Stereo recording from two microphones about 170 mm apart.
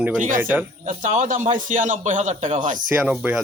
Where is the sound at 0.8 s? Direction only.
45° right (ahead or behind).